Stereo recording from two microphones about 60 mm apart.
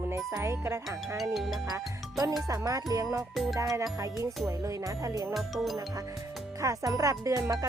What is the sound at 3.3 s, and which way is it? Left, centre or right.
Speech, centre.